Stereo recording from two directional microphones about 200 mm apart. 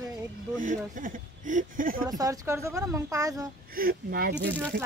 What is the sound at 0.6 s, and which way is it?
A woman's voice, 40° right (ahead or behind).